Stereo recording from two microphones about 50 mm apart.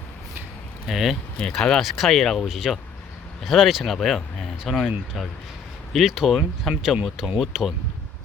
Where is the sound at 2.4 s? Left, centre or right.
Centre.